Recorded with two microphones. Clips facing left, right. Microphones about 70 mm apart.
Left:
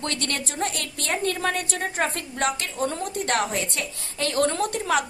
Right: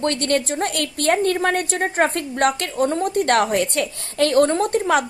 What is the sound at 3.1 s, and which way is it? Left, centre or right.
A woman's voice, right.